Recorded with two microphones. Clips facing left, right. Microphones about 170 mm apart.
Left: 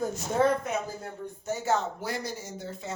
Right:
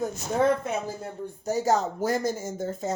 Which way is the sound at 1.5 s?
40° right (ahead or behind).